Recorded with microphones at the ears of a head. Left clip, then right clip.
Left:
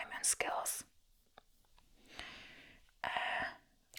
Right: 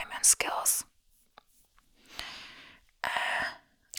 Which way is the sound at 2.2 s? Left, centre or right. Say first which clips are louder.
Right 8 dB; right.